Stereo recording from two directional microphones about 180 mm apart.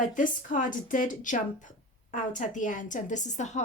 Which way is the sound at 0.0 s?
45° left (ahead or behind).